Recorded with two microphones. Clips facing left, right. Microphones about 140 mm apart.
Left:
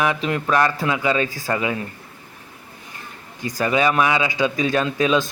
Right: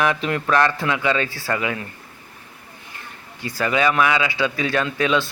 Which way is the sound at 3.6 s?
20° left (ahead or behind).